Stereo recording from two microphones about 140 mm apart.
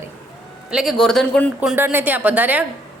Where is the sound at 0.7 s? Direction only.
5° right (ahead or behind).